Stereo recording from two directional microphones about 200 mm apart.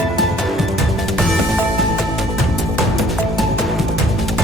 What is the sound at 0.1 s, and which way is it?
Music, centre (ahead or behind).